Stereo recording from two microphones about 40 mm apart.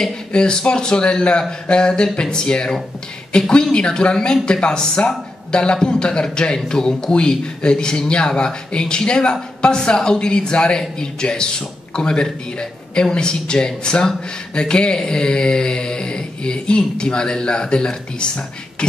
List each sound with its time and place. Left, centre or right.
0.3 s a man's voice: left